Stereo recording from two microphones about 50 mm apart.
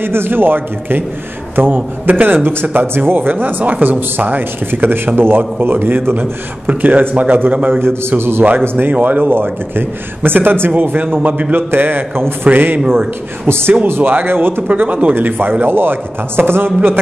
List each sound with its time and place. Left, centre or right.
0.0 s a man's voice: right
8.2 s a man's voice: right
8.5 s a man's voice: right
13.5 s a man's voice: right
13.8 s a man's voice: right
14.7 s speech: right
15.1 s a man's voice: right